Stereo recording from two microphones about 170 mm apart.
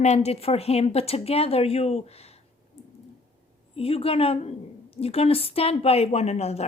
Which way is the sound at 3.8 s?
35° left (ahead or behind).